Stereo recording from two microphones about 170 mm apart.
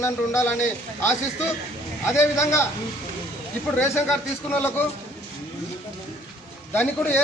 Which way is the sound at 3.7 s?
15° left (ahead or behind).